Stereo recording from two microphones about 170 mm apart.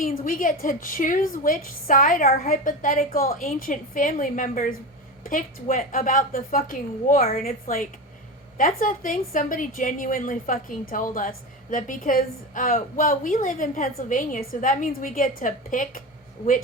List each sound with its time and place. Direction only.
0.0 s a woman's voice: 50° left (ahead or behind)